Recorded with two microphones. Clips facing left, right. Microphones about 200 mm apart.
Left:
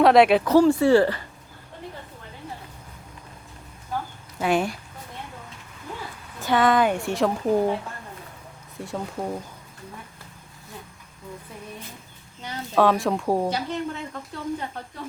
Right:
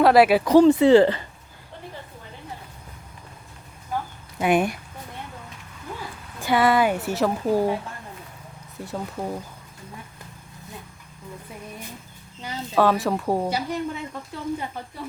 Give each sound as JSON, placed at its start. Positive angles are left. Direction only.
{"t": 0.0, "sound": "a woman's voice", "side_deg": -5}
{"t": 0.5, "sound": "speech", "side_deg": -20}
{"t": 4.4, "sound": "speech", "side_deg": -20}
{"t": 6.4, "sound": "a woman's voice", "side_deg": -10}
{"t": 8.8, "sound": "a woman's voice", "side_deg": 0}
{"t": 12.4, "sound": "a woman's voice", "side_deg": -5}